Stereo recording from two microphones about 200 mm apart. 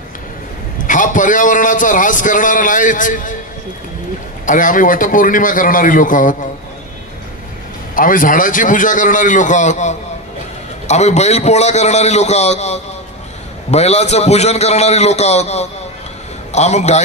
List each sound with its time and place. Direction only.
0.8 s a man's voice: 40° left (ahead or behind)
4.5 s a man's voice: 40° left (ahead or behind)
7.9 s a man's voice: 45° left (ahead or behind)